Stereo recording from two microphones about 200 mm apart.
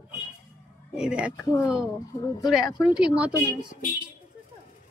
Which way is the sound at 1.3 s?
15° left (ahead or behind).